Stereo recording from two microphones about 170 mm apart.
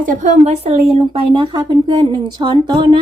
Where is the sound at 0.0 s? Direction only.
50° right (ahead or behind).